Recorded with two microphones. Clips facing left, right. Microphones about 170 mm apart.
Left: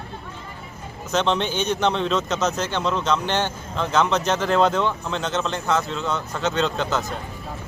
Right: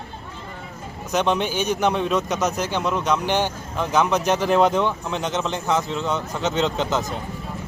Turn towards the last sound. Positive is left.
turn(degrees=-20)  # may be behind; listen again after turning